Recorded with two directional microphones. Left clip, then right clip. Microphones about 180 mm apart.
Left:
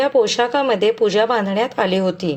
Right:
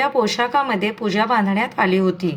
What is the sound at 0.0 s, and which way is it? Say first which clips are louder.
Speech: left 3 dB; 30° left (ahead or behind).